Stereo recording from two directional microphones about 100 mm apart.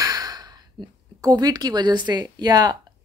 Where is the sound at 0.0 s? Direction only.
40° right (ahead or behind).